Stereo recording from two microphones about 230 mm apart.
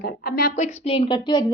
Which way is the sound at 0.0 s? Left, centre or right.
Left.